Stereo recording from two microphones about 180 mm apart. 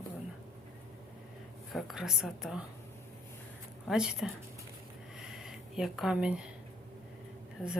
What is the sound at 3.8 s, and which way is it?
Speech, 5° right (ahead or behind).